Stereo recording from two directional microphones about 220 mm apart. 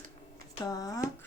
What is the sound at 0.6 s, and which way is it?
Speech, 15° left (ahead or behind).